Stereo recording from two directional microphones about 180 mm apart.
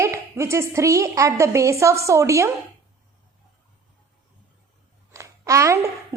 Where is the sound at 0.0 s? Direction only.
15° right (ahead or behind).